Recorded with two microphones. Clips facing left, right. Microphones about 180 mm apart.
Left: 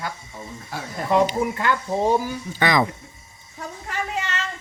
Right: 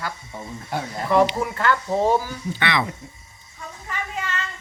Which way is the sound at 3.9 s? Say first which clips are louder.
Left 2 dB; 85° left.